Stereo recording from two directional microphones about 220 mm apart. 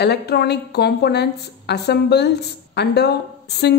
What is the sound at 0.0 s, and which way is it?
A woman's voice, 45° left (ahead or behind).